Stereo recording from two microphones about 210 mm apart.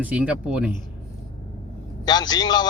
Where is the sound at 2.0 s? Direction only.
20° left (ahead or behind).